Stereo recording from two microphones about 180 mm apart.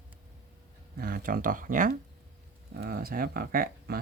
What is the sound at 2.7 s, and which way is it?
Speech, 60° right (ahead or behind).